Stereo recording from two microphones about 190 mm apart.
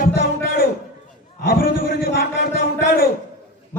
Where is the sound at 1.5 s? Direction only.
50° left (ahead or behind).